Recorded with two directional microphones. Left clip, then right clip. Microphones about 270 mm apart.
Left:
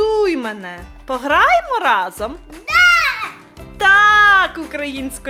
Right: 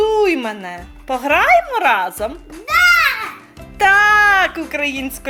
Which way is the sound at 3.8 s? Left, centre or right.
Centre.